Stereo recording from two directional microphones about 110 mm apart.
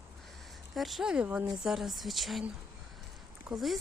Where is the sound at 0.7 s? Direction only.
Centre (ahead or behind).